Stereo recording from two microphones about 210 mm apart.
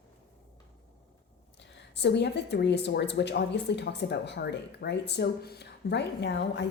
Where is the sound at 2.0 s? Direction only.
55° left (ahead or behind).